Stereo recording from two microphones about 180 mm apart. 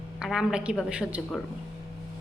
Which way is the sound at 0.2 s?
5° right (ahead or behind).